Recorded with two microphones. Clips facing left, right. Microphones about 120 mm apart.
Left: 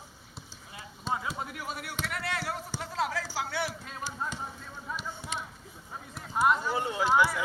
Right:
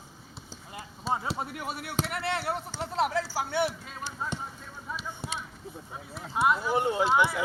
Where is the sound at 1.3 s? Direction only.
30° right (ahead or behind).